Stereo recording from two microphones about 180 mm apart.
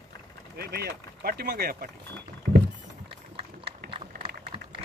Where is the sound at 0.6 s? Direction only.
60° right (ahead or behind).